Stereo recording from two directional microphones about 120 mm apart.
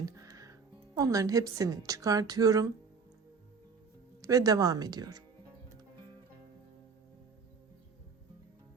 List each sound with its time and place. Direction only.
0.0 s music: 30° right (ahead or behind)
0.9 s a woman's voice: 30° right (ahead or behind)
4.2 s speech: 30° right (ahead or behind)